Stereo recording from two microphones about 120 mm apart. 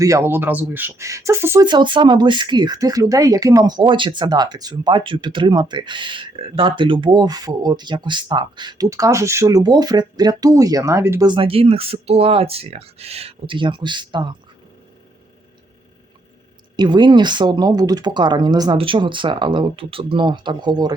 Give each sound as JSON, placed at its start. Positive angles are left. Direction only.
{"t": 0.0, "sound": "speech", "side_deg": -25}
{"t": 1.6, "sound": "speech", "side_deg": -40}
{"t": 11.3, "sound": "speech", "side_deg": -45}
{"t": 16.7, "sound": "speech", "side_deg": -40}